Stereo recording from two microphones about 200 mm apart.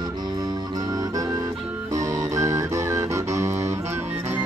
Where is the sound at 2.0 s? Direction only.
15° right (ahead or behind).